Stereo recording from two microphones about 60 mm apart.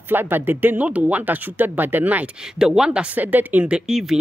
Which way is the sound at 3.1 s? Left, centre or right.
Right.